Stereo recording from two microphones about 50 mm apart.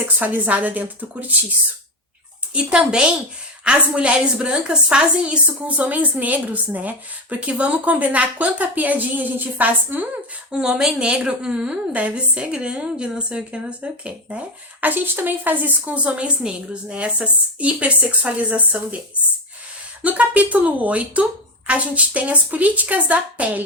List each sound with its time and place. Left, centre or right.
0.2 s a woman's voice: right
2.5 s a woman's voice: right
10.5 s a woman's voice: centre
14.8 s a woman's voice: right
20.0 s a woman's voice: right